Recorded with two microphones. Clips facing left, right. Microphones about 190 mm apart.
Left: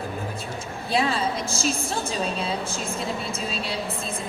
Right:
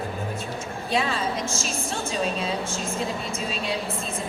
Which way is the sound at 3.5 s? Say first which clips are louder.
Right 2 dB; 35° left (ahead or behind).